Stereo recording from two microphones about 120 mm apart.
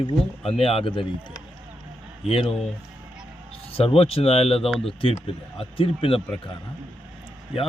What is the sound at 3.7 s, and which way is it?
Speech, 55° left (ahead or behind).